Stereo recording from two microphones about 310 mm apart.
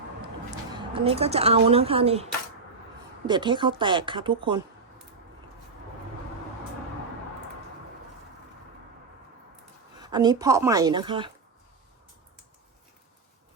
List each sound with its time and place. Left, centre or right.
0.9 s a woman's voice: centre
10.0 s speech: centre